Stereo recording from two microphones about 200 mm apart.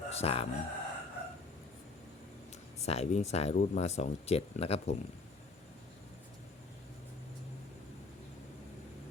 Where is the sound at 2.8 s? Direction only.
30° left (ahead or behind).